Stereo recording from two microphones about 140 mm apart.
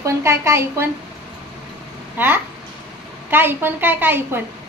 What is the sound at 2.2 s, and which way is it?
A woman's voice, 15° right (ahead or behind).